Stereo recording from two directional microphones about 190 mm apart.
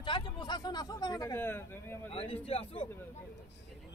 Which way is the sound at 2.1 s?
30° left (ahead or behind).